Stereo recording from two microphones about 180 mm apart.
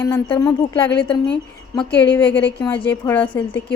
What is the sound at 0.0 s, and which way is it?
Speech, 15° left (ahead or behind).